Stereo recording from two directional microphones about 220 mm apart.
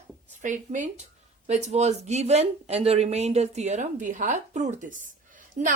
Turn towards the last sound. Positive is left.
turn(degrees=-35)  # may be behind; listen again after turning